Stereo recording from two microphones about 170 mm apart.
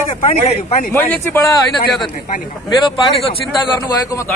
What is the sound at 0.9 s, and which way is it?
Speech, 15° left (ahead or behind).